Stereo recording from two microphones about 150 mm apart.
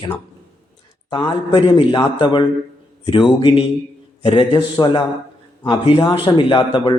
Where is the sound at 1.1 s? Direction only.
30° left (ahead or behind).